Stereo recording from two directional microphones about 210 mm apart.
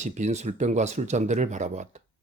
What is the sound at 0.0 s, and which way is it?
Speech, 35° right (ahead or behind).